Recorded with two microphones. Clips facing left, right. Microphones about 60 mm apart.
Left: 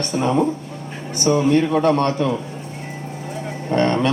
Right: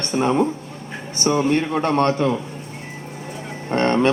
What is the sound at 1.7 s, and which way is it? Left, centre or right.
Speech, right.